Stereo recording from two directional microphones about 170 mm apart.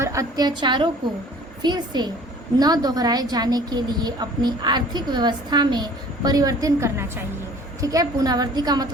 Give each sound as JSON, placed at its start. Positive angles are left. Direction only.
{"t": 0.0, "sound": "a woman's voice", "side_deg": -20}